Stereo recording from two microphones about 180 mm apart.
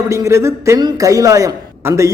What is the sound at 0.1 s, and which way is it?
A man's voice, 15° right (ahead or behind).